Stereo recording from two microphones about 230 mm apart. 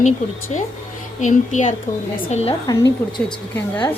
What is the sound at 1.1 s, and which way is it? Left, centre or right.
Speech, left.